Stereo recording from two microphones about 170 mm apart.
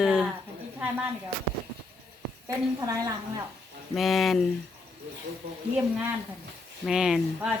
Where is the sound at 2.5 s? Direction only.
20° right (ahead or behind).